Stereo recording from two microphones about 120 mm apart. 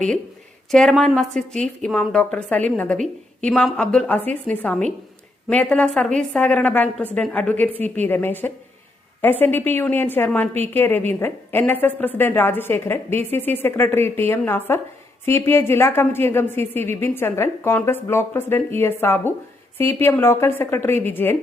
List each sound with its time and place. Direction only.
0.7 s a woman's voice: 5° left (ahead or behind)